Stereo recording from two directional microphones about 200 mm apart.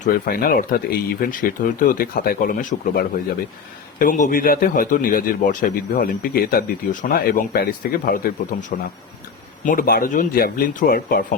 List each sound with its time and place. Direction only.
0.0 s a man's voice: 45° left (ahead or behind)
8.5 s a man's voice: 35° left (ahead or behind)